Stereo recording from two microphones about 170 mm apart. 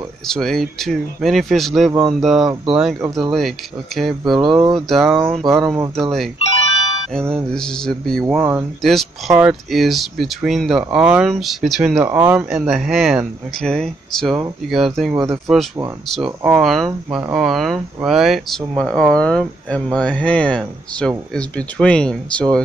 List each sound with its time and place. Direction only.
0.3 s speech: centre (ahead or behind)
7.5 s speech: 5° left (ahead or behind)
8.4 s speech: 15° right (ahead or behind)
8.8 s speech: centre (ahead or behind)
15.1 s speech: 20° right (ahead or behind)
16.4 s speech: 5° right (ahead or behind)